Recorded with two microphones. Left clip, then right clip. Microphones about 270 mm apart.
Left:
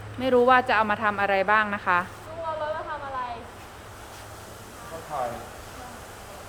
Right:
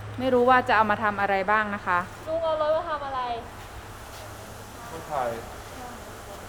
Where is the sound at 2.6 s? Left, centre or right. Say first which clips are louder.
Right 5 dB; right.